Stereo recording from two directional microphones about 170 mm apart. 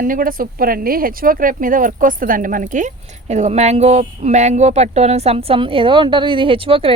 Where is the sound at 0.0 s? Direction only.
55° right (ahead or behind).